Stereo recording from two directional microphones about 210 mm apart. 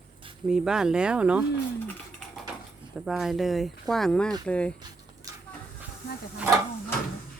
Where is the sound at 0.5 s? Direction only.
5° right (ahead or behind).